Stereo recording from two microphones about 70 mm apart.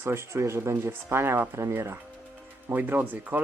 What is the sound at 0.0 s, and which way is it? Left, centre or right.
Speech, right.